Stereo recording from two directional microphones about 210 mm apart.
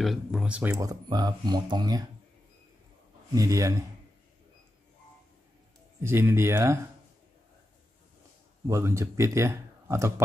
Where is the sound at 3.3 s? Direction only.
15° right (ahead or behind).